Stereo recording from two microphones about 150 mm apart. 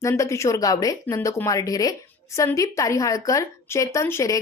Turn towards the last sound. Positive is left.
turn(degrees=20)  # may be behind; listen again after turning